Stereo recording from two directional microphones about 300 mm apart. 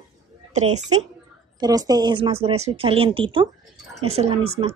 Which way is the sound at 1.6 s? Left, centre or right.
Centre.